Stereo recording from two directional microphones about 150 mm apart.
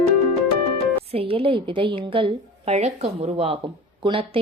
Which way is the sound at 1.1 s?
40° right (ahead or behind).